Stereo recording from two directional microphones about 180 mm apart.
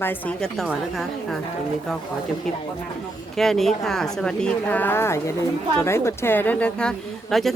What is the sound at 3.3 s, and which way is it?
Speech, centre (ahead or behind).